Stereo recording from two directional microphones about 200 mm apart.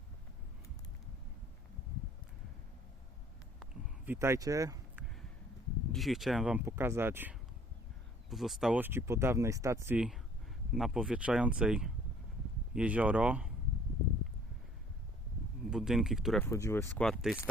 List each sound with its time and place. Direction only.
4.0 s speech: 10° right (ahead or behind)
5.9 s speech: centre (ahead or behind)
15.7 s speech: 5° right (ahead or behind)
16.5 s speech: 15° left (ahead or behind)
17.0 s speech: centre (ahead or behind)